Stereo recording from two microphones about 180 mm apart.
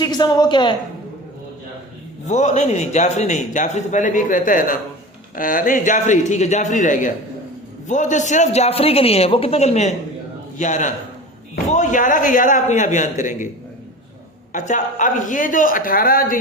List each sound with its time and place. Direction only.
0.0 s a woman's voice: 25° left (ahead or behind)
2.2 s a man's voice: 40° left (ahead or behind)
14.5 s speech: 45° left (ahead or behind)